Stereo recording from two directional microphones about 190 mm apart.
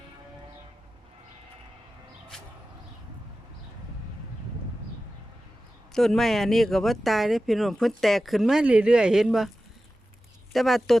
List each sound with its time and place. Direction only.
5.9 s speech: centre (ahead or behind)
10.5 s speech: centre (ahead or behind)